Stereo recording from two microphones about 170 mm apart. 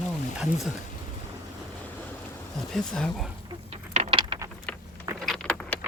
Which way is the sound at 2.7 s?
5° left (ahead or behind).